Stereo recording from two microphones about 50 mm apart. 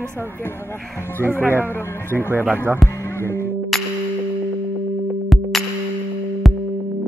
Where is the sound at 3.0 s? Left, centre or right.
Left.